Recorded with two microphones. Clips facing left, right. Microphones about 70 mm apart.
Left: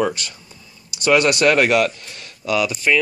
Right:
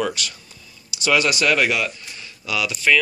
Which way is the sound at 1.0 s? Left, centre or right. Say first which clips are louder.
Left 4 dB; left.